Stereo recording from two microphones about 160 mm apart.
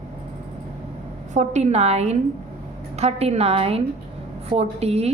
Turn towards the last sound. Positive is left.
turn(degrees=-40)  # may be behind; listen again after turning